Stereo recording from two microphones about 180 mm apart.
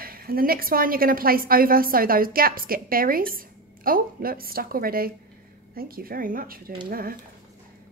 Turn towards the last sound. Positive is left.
turn(degrees=-55)  # may be behind; listen again after turning